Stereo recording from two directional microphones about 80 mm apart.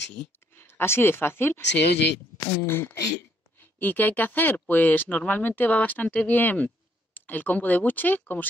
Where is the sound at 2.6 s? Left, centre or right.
Left.